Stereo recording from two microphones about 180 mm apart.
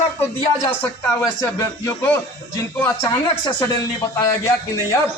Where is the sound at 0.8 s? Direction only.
15° left (ahead or behind).